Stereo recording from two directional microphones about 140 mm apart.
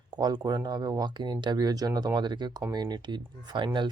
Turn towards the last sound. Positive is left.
turn(degrees=-35)  # may be behind; listen again after turning